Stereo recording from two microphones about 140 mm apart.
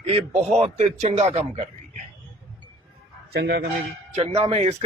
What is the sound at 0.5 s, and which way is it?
Speech, 50° right (ahead or behind).